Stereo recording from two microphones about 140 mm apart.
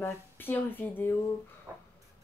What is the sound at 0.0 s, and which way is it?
Speech, 15° left (ahead or behind).